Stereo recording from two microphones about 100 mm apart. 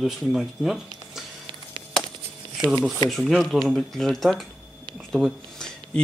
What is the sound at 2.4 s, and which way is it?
Shuffling cards, 50° right (ahead or behind).